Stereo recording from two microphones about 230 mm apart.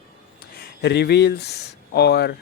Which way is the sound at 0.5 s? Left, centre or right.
Left.